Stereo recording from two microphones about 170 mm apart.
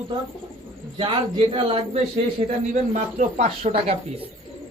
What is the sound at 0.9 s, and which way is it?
Speech, 30° right (ahead or behind).